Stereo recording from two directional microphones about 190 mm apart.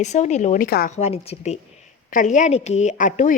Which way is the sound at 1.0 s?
35° left (ahead or behind).